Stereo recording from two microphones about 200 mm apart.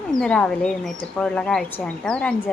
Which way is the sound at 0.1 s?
5° left (ahead or behind).